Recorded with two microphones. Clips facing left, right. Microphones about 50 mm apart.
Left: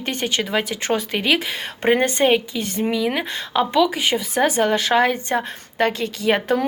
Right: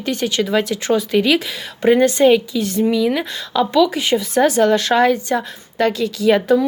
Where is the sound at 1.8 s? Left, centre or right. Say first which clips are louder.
Right 5 dB; left.